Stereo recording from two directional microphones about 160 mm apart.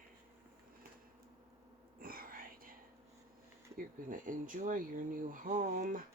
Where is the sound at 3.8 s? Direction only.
55° right (ahead or behind).